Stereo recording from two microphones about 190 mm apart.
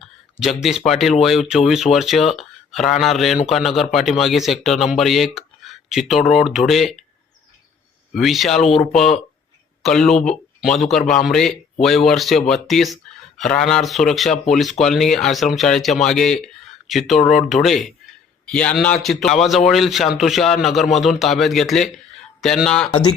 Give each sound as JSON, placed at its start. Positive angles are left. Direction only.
{"t": 0.3, "sound": "a man's voice", "side_deg": 0}
{"t": 8.1, "sound": "a man's voice", "side_deg": 0}
{"t": 8.8, "sound": "speech", "side_deg": 40}
{"t": 9.8, "sound": "a man's voice", "side_deg": 0}
{"t": 22.9, "sound": "speech", "side_deg": 25}